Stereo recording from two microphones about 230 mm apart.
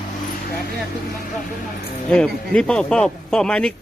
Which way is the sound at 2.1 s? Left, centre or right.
Centre.